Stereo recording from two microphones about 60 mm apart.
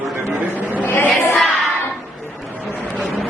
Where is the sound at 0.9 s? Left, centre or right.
Left.